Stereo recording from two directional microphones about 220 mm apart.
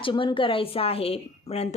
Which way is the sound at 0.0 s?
20° left (ahead or behind).